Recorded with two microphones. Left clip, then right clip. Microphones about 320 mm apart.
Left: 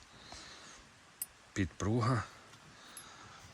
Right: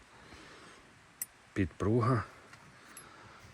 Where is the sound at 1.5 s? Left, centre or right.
Centre.